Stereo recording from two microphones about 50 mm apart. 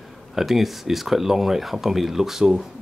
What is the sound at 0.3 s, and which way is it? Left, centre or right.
Speech, centre.